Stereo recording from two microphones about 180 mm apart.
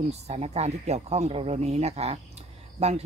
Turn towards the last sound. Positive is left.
turn(degrees=-35)  # may be behind; listen again after turning